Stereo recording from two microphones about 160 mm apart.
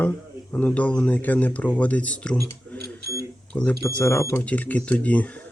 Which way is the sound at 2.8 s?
85° right.